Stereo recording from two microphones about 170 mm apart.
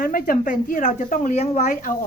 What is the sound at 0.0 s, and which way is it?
A woman's voice, 55° left (ahead or behind).